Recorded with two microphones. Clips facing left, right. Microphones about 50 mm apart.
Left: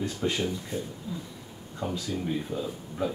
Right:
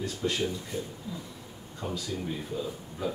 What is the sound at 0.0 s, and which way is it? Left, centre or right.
Speech, left.